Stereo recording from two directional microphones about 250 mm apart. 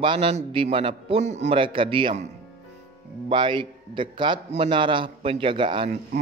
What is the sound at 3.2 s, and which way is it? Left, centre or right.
A man's voice, centre.